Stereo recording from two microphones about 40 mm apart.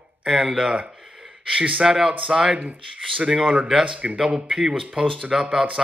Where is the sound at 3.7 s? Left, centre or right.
Right; by 5.5 s centre.